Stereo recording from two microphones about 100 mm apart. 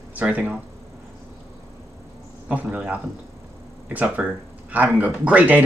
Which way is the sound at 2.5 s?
10° right (ahead or behind).